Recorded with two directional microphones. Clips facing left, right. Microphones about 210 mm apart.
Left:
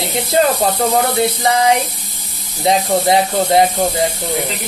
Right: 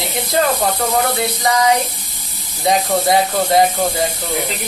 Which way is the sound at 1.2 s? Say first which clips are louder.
Left 2 dB; 25° left (ahead or behind).